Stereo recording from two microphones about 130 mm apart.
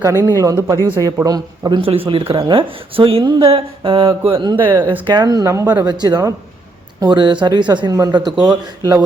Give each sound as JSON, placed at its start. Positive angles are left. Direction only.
{"t": 0.0, "sound": "speech", "side_deg": -25}
{"t": 4.5, "sound": "speech", "side_deg": -20}
{"t": 5.0, "sound": "speech", "side_deg": -35}
{"t": 5.8, "sound": "speech", "side_deg": -30}